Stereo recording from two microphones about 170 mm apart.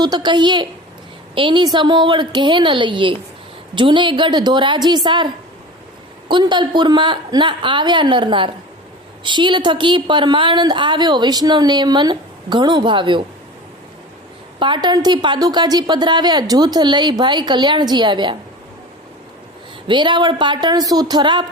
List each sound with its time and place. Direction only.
0.0 s a woman's voice: 25° right (ahead or behind)
14.6 s a woman's voice: 25° right (ahead or behind)
19.9 s a woman's voice: 30° right (ahead or behind)